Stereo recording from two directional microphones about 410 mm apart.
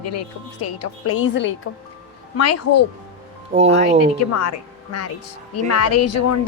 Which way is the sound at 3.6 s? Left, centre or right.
Centre.